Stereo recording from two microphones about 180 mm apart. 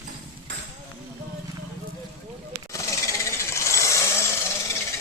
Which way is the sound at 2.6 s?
15° left (ahead or behind).